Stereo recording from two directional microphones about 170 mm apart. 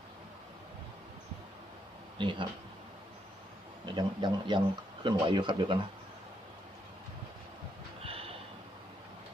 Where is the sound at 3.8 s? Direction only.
25° right (ahead or behind).